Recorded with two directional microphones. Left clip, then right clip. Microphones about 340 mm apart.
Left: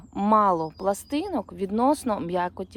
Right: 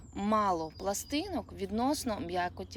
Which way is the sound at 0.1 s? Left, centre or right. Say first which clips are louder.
Left 9 dB; centre.